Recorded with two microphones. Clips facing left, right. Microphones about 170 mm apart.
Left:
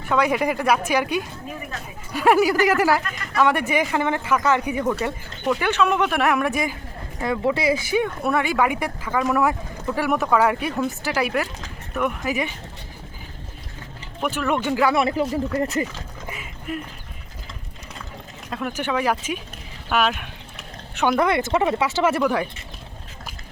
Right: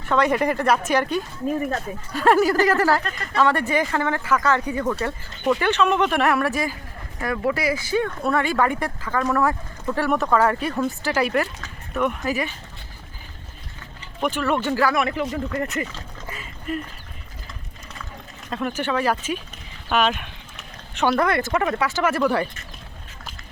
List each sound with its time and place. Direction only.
0.0 s speech: 10° left (ahead or behind)
1.5 s speech: 45° right (ahead or behind)
2.1 s speech: 10° left (ahead or behind)
7.9 s speech: 15° left (ahead or behind)
14.2 s speech: 5° left (ahead or behind)
14.9 s speech: 30° left (ahead or behind)
15.8 s a sound: 15° left (ahead or behind)
18.5 s speech: 10° left (ahead or behind); by 22.2 s 25° left (ahead or behind)
22.2 s speech: 10° left (ahead or behind)